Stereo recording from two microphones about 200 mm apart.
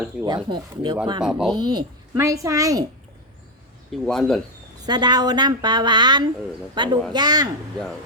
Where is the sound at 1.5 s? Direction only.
20° right (ahead or behind).